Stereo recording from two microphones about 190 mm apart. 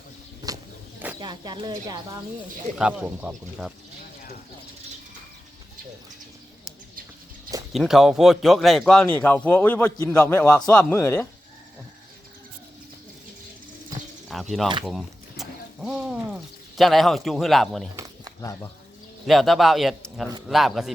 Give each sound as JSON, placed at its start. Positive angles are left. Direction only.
{"t": 0.4, "sound": "bird", "side_deg": -15}
{"t": 1.2, "sound": "speech", "side_deg": -20}
{"t": 2.7, "sound": "a man's voice", "side_deg": -5}
{"t": 7.7, "sound": "speech", "side_deg": 0}
{"t": 14.3, "sound": "a sound", "side_deg": 0}
{"t": 14.8, "sound": "bird", "side_deg": 0}
{"t": 16.7, "sound": "a man's voice", "side_deg": 0}
{"t": 19.3, "sound": "a man's voice", "side_deg": 0}